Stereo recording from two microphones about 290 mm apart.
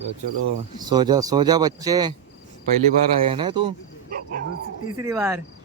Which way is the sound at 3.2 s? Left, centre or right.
Centre.